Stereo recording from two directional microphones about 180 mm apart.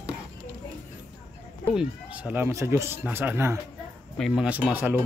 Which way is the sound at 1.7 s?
5° right (ahead or behind).